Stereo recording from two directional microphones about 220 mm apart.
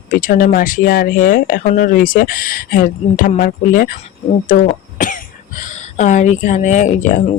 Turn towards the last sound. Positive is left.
turn(degrees=35)  # may be behind; listen again after turning